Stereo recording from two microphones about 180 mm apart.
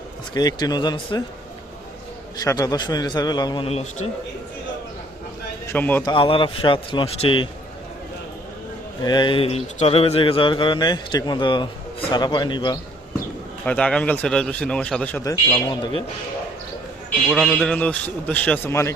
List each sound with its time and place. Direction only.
0.3 s speech: 25° left (ahead or behind)
2.4 s speech: 20° left (ahead or behind); by 4.1 s 35° left (ahead or behind)
5.7 s a man's voice: 10° left (ahead or behind)
6.1 s speech: 30° left (ahead or behind)
9.0 s speech: 25° left (ahead or behind)
13.7 s a man's voice: 5° left (ahead or behind)
15.2 s speech: 20° left (ahead or behind)
17.2 s a man's voice: centre (ahead or behind); by 18.9 s 15° left (ahead or behind)